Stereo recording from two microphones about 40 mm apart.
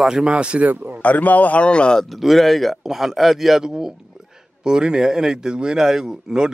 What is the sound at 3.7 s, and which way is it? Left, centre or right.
Speech, centre.